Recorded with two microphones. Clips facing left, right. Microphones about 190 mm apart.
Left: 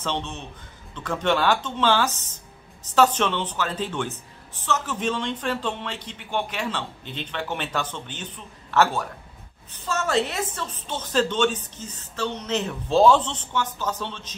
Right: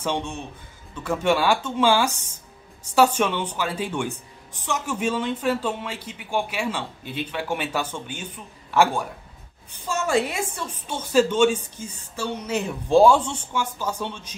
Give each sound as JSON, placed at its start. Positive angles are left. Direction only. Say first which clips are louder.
{"t": 0.0, "sound": "speech", "louder": "right 2 dB", "side_deg": -10}